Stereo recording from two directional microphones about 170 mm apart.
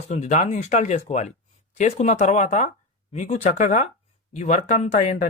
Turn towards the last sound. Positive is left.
turn(degrees=45)  # may be behind; listen again after turning